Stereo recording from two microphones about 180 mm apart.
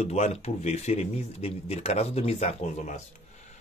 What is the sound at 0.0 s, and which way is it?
Speech, 40° left (ahead or behind).